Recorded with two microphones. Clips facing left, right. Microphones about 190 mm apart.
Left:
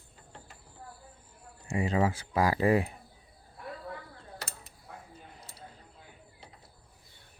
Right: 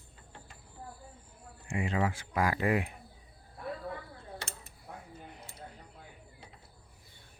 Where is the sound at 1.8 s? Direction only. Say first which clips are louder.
Left 4 dB; 35° left (ahead or behind).